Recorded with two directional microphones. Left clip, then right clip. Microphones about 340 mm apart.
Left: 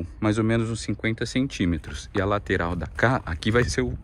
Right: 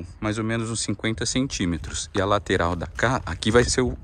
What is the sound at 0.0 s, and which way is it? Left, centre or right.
Speech, centre.